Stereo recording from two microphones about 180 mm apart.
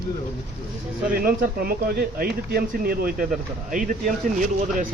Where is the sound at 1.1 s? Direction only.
55° right (ahead or behind).